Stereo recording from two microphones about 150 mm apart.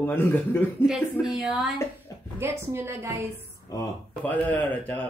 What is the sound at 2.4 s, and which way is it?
Speech, 15° right (ahead or behind).